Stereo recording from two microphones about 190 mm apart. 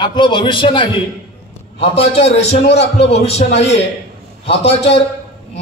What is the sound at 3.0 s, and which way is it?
A man's voice, 30° left (ahead or behind).